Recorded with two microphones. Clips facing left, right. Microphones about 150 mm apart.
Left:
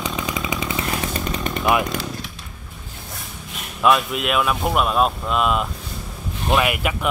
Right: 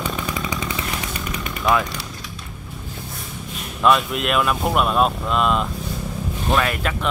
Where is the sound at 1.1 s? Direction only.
40° left (ahead or behind).